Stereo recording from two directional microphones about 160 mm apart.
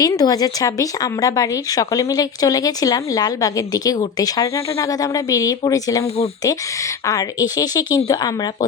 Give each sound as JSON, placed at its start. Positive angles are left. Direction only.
{"t": 0.0, "sound": "speech", "side_deg": 25}
{"t": 7.1, "sound": "speech", "side_deg": 20}